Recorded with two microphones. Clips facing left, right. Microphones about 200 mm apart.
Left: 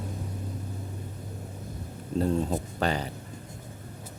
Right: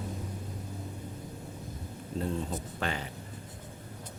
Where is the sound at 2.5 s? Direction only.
35° left (ahead or behind).